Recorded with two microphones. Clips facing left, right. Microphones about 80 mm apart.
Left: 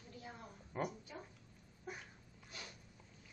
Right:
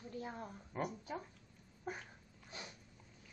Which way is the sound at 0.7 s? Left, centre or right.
Centre.